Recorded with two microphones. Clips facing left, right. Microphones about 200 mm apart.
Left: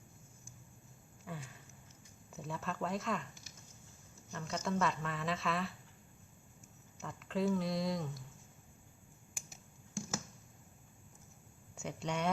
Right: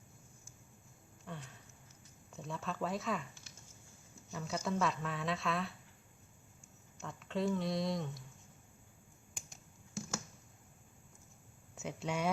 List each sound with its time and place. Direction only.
1.2 s a sound: 5° left (ahead or behind)
2.3 s a woman's voice: centre (ahead or behind)
4.3 s a woman's voice: 5° right (ahead or behind)
7.0 s a woman's voice: centre (ahead or behind)
9.3 s finger snapping: 5° left (ahead or behind)
11.7 s speech: centre (ahead or behind)